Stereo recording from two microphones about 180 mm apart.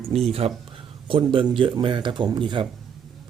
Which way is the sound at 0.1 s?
35° right (ahead or behind).